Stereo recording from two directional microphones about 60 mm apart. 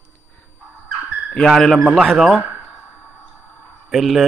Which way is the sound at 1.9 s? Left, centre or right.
Centre.